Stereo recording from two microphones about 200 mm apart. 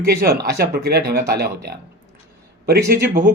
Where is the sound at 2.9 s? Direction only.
50° right (ahead or behind).